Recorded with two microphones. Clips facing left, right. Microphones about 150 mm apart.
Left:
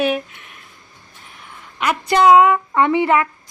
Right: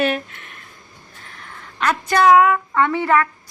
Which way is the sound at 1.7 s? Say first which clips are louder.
Left 1 dB; 10° left (ahead or behind).